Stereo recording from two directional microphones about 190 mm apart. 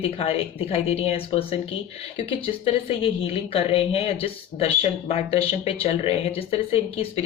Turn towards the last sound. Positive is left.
turn(degrees=30)  # may be behind; listen again after turning